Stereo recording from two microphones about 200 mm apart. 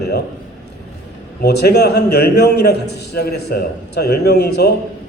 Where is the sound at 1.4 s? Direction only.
55° left (ahead or behind).